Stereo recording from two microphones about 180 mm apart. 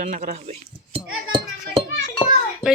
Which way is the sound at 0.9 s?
35° right (ahead or behind).